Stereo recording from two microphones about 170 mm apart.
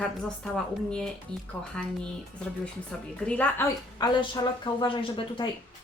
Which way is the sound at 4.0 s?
25° left (ahead or behind).